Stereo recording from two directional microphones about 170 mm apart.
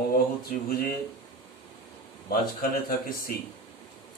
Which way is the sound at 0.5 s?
60° left (ahead or behind).